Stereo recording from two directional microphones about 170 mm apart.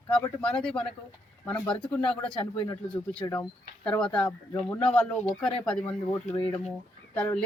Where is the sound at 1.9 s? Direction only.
5° left (ahead or behind).